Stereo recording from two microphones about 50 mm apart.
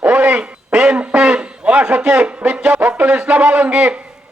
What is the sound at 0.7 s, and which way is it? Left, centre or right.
Quack, centre.